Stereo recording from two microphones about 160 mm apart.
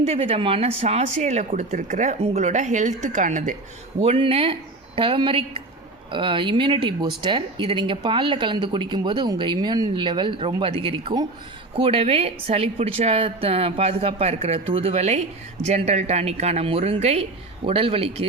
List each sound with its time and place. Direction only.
0.0 s speech: 40° right (ahead or behind)
4.0 s a woman's voice: 40° right (ahead or behind)